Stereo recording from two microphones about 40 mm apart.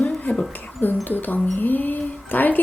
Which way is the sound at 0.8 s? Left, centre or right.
Left.